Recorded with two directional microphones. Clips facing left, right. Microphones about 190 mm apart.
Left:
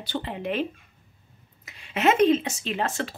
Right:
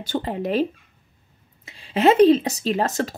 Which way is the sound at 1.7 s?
30° right (ahead or behind).